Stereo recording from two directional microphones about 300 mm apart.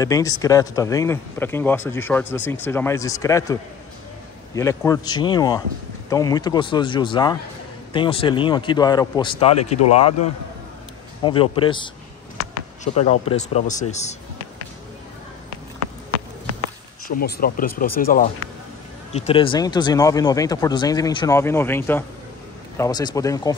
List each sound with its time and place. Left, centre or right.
0.0 s speech: centre
4.6 s speech: centre
11.2 s speech: centre
17.1 s speech: left; by 23.5 s centre